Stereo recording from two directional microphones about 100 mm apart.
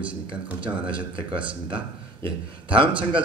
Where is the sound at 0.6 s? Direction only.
55° right (ahead or behind).